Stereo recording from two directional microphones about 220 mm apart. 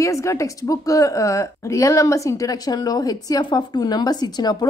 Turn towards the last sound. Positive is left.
turn(degrees=20)  # may be behind; listen again after turning